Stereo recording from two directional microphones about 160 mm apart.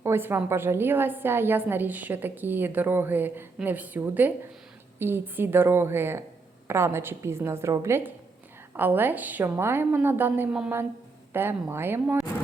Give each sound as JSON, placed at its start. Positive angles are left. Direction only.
{"t": 0.0, "sound": "a woman's voice", "side_deg": -15}